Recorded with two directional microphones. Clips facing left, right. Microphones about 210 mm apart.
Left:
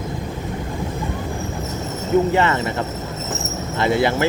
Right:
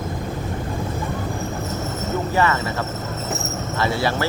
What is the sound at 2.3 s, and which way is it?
Speech, 25° left (ahead or behind).